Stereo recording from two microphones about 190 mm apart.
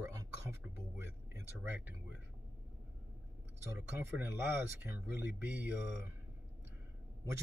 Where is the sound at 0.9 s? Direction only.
10° right (ahead or behind).